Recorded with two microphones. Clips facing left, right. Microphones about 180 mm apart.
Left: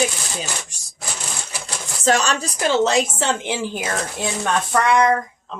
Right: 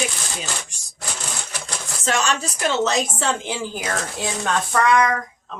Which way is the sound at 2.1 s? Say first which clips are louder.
Left 4 dB; 35° left (ahead or behind).